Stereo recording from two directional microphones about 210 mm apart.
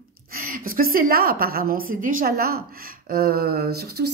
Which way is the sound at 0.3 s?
45° right (ahead or behind).